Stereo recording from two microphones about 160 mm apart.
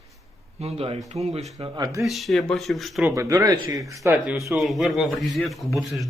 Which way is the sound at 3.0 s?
20° right (ahead or behind).